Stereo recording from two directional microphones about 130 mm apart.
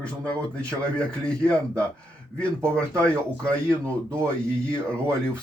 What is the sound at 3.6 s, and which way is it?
Speech, 20° right (ahead or behind).